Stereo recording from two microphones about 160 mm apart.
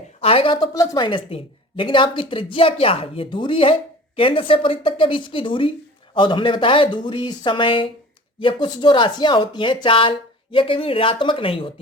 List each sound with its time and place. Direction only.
0.2 s a woman's voice: 35° left (ahead or behind)